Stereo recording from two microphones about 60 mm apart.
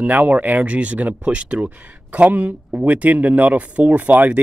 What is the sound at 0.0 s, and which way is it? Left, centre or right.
Speech, right.